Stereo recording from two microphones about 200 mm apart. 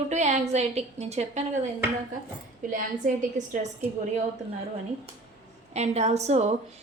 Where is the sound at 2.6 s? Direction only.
45° right (ahead or behind).